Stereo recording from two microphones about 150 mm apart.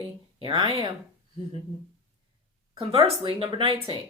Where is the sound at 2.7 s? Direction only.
40° right (ahead or behind).